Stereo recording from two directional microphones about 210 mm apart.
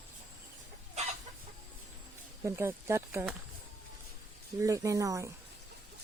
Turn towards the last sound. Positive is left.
turn(degrees=-15)  # may be behind; listen again after turning